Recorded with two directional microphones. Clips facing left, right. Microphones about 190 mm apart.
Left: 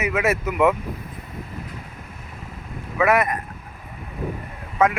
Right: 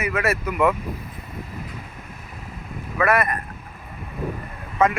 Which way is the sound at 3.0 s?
15° left (ahead or behind).